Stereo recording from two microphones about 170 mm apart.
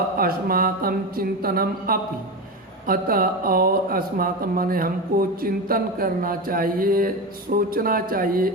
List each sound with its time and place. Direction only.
0.2 s speech: 60° right (ahead or behind)